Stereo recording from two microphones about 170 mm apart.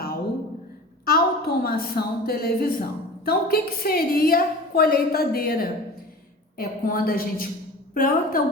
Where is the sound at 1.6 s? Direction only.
65° left (ahead or behind).